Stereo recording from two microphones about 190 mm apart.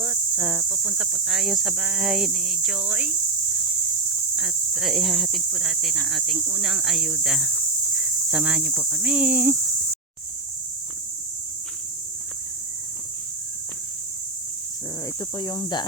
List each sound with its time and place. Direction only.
0.0 s speech: 5° right (ahead or behind)
4.4 s speech: 5° right (ahead or behind)
15.2 s speech: 20° left (ahead or behind)